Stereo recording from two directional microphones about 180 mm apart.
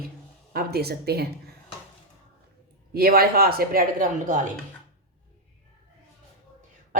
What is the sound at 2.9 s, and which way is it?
Speech, 55° right (ahead or behind).